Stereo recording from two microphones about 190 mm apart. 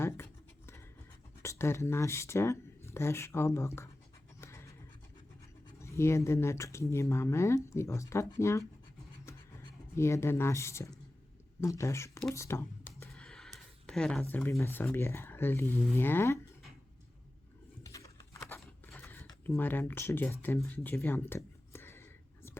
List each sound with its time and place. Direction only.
1.4 s speech: 15° left (ahead or behind)
4.4 s a sound: 15° left (ahead or behind)
5.8 s speech: 15° left (ahead or behind)
9.9 s speech: 15° left (ahead or behind)
17.8 s a sound: 15° left (ahead or behind)
19.0 s mechanisms: 10° left (ahead or behind)
19.5 s speech: 10° left (ahead or behind)